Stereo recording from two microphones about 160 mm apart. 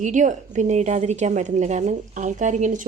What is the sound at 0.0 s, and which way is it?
A woman's voice, 50° right (ahead or behind).